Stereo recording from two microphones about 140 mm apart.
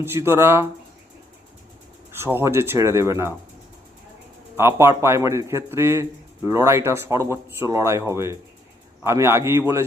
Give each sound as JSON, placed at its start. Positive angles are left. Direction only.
{"t": 0.0, "sound": "speech", "side_deg": -15}
{"t": 2.1, "sound": "a man's voice", "side_deg": -15}
{"t": 4.5, "sound": "a man's voice", "side_deg": -20}